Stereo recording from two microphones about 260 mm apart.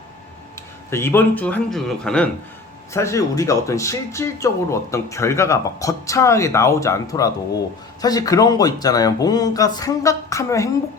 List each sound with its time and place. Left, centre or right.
0.9 s speech: centre